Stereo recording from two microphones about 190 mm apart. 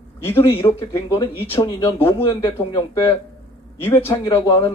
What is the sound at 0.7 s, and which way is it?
Speech, 15° left (ahead or behind).